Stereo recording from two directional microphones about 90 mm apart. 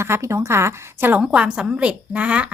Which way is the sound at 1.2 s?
10° right (ahead or behind).